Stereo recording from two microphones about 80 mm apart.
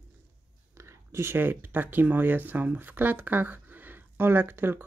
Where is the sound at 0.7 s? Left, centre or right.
Right.